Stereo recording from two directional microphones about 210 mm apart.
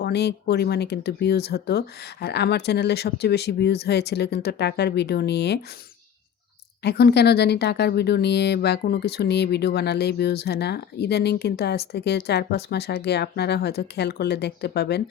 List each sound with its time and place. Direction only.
0.0 s speech: 50° left (ahead or behind)
6.8 s speech: 50° left (ahead or behind)